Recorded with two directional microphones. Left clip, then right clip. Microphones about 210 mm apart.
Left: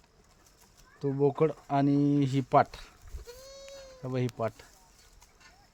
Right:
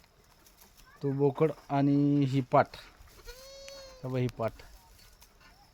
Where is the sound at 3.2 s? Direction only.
30° right (ahead or behind).